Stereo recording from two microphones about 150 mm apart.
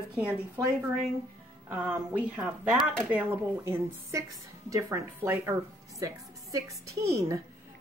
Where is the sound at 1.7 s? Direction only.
10° right (ahead or behind).